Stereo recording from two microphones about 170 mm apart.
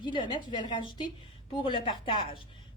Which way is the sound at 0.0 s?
30° left (ahead or behind).